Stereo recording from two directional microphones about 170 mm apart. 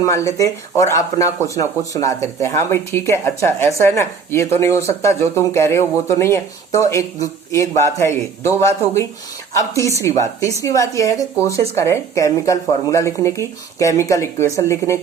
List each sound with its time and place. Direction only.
0.0 s speech: 20° left (ahead or behind)